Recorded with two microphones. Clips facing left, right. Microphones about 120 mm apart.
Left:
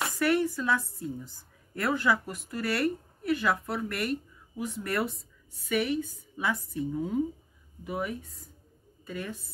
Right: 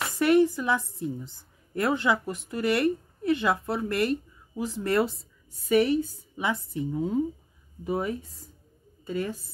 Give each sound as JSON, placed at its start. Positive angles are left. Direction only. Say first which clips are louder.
{"t": 0.2, "sound": "a woman's voice", "louder": "right 6 dB", "side_deg": -20}
{"t": 6.3, "sound": "a woman's voice", "louder": "right 2 dB", "side_deg": -20}
{"t": 7.8, "sound": "a woman's voice", "louder": "right 5 dB", "side_deg": -35}